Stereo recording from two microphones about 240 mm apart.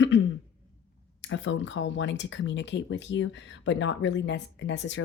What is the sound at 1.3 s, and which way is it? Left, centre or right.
Speech, left.